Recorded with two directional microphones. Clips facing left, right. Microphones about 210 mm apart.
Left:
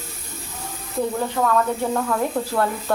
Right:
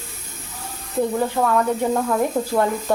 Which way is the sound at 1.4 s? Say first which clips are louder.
Even; 10° right (ahead or behind).